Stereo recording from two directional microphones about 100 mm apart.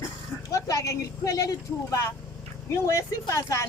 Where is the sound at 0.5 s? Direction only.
35° left (ahead or behind).